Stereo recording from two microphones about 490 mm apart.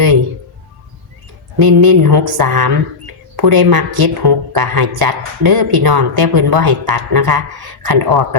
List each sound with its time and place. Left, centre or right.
1.5 s a woman's voice: right